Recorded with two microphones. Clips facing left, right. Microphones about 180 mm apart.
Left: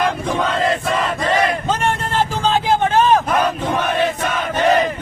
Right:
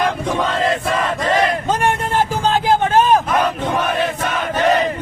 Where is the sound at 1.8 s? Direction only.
10° right (ahead or behind).